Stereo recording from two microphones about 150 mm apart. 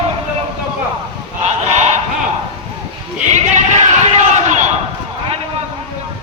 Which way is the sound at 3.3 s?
50° right (ahead or behind).